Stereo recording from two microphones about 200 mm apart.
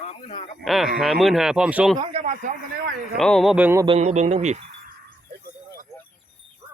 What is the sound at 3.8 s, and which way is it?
Speech, 35° right (ahead or behind).